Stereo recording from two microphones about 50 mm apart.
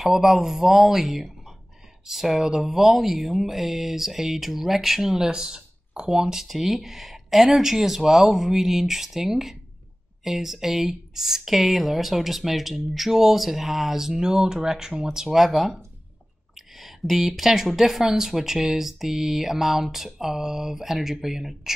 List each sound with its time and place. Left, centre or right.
0.0 s speech: centre